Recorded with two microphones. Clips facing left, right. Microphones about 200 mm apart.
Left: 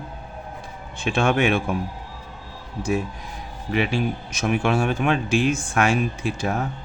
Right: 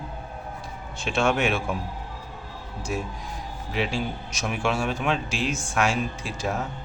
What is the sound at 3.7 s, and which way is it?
A man's voice, 60° left (ahead or behind).